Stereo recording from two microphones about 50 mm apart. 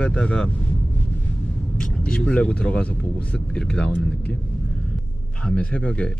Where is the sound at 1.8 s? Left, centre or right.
Left.